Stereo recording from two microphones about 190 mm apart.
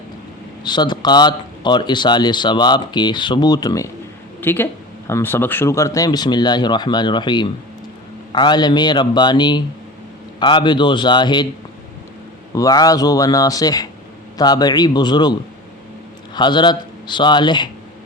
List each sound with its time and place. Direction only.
0.6 s speech: 25° left (ahead or behind)
12.5 s speech: 20° left (ahead or behind)